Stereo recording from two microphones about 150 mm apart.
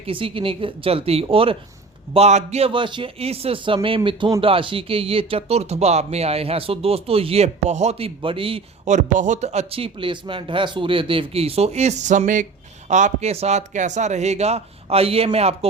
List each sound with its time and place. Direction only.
0.0 s speech: 35° right (ahead or behind)
8.8 s speech: 55° right (ahead or behind)